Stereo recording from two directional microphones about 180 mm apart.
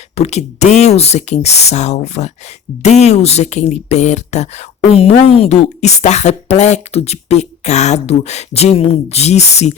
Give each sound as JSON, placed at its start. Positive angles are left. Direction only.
{"t": 0.2, "sound": "speech", "side_deg": 35}